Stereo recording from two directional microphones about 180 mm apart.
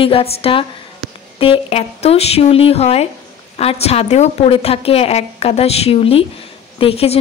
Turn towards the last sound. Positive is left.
turn(degrees=35)  # may be behind; listen again after turning